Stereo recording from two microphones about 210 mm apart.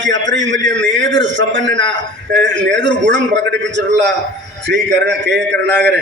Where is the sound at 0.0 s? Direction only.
60° right (ahead or behind).